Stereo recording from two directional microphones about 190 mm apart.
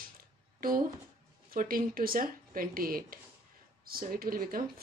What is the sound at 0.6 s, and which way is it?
Speech, 45° right (ahead or behind).